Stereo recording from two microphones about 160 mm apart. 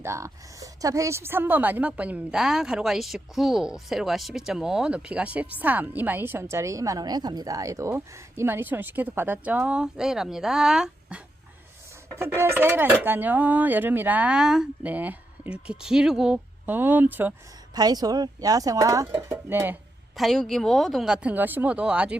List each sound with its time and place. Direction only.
0.0 s a woman's voice: 20° right (ahead or behind)
12.4 s a woman's voice: 15° right (ahead or behind)
17.7 s a woman's voice: 25° right (ahead or behind)
20.1 s speech: centre (ahead or behind)